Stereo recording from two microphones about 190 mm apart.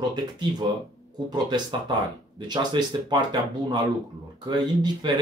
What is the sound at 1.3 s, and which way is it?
Speech, 25° right (ahead or behind).